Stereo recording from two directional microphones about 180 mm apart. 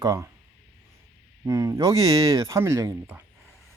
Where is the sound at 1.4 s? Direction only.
20° right (ahead or behind).